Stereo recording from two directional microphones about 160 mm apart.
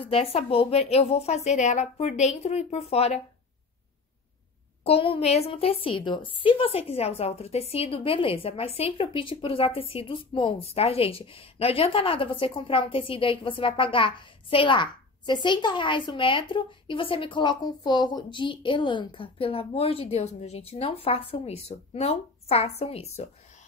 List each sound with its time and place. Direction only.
0.0 s a woman's voice: 35° left (ahead or behind)
4.8 s a woman's voice: 35° left (ahead or behind)